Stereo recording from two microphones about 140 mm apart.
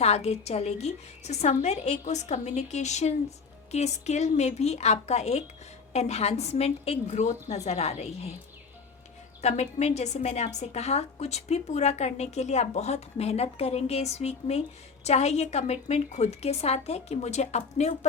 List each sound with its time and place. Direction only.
0.0 s a woman's voice: 50° left (ahead or behind)
9.4 s a woman's voice: 55° left (ahead or behind)